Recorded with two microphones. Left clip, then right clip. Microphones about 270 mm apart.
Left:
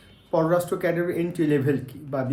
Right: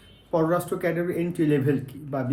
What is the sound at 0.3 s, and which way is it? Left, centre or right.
Speech, centre.